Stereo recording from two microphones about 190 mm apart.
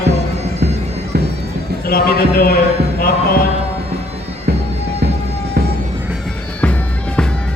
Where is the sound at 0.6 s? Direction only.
55° right (ahead or behind).